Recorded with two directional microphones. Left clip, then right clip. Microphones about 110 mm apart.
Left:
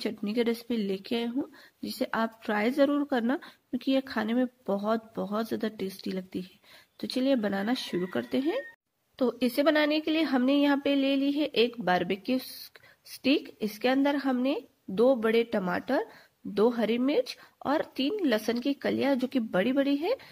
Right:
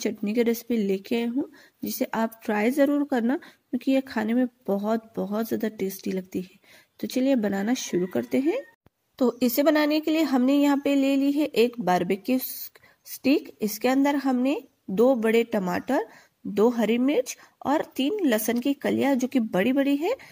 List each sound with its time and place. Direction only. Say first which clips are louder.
0.0 s a woman's voice: right 4 dB; 30° right (ahead or behind)
9.2 s speech: right 4 dB; 45° right (ahead or behind)